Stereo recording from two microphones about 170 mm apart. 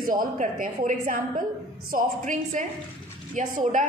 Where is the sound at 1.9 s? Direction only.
45° right (ahead or behind).